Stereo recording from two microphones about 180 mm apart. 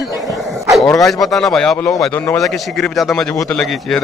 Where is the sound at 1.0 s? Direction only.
Centre (ahead or behind).